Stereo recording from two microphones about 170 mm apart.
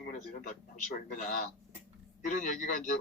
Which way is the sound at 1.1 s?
50° left (ahead or behind).